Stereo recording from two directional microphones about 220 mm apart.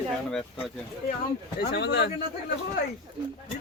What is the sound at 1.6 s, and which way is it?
Speech, 50° left (ahead or behind).